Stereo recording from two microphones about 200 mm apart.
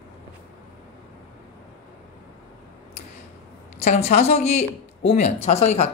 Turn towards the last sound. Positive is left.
turn(degrees=30)  # may be behind; listen again after turning